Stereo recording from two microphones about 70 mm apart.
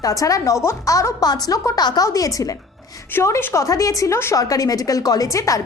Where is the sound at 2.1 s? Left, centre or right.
Left.